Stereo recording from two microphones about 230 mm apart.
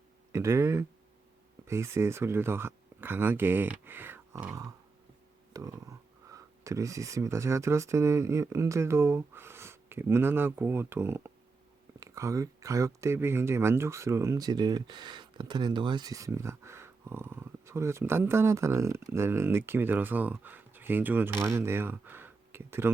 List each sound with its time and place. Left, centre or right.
0.3 s speech: centre